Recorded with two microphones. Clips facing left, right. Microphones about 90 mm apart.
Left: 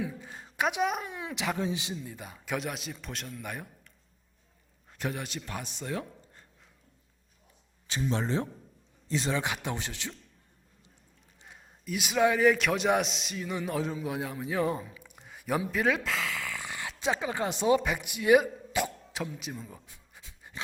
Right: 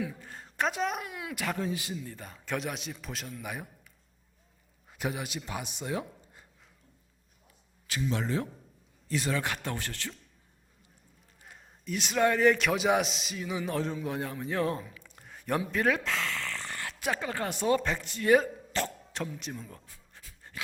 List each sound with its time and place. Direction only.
0.2 s a woman's voice: 5° left (ahead or behind)
1.0 s a man's voice: 25° left (ahead or behind)
1.5 s a man's voice: 10° left (ahead or behind)
1.7 s a man's voice: 20° left (ahead or behind)
2.0 s a man's voice: 5° left (ahead or behind)
4.9 s speech: 5° right (ahead or behind)
8.0 s a man's voice: 30° left (ahead or behind)
11.4 s a man's voice: centre (ahead or behind)
19.9 s pant: 15° left (ahead or behind)